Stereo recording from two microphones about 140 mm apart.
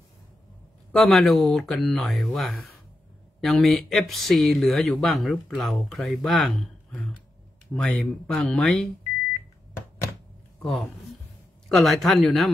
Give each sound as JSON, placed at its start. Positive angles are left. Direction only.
{"t": 0.9, "sound": "speech", "side_deg": 0}
{"t": 9.8, "sound": "a sound", "side_deg": 20}
{"t": 10.6, "sound": "speech", "side_deg": 0}